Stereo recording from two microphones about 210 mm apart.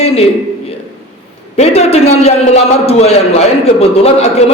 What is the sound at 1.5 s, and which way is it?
A man's voice, 30° left (ahead or behind).